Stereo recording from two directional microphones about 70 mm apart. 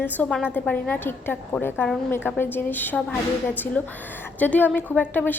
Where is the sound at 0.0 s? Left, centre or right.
Left.